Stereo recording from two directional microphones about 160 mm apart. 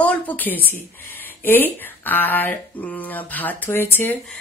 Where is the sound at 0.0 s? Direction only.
10° left (ahead or behind).